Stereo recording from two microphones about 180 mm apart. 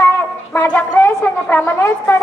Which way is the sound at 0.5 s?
10° left (ahead or behind).